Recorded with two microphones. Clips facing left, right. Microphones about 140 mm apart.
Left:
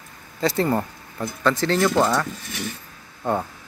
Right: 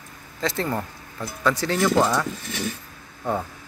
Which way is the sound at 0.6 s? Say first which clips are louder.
Left 5 dB; 25° left (ahead or behind).